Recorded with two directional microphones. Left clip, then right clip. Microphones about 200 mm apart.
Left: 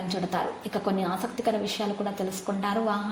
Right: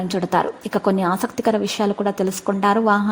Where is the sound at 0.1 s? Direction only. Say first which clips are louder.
Right 9 dB; 50° right (ahead or behind).